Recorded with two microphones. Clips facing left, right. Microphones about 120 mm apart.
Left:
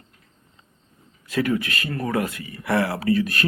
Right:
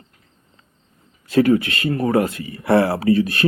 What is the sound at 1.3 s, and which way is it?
Speech, 30° right (ahead or behind).